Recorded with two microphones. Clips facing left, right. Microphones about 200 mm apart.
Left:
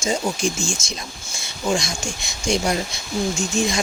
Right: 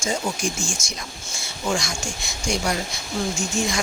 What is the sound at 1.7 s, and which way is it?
Speech, 20° left (ahead or behind).